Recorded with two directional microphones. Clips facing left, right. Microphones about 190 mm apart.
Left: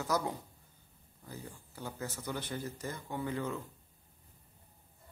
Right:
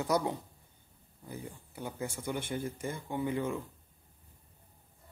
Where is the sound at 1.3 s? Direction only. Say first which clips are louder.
Right 3 dB; 15° right (ahead or behind).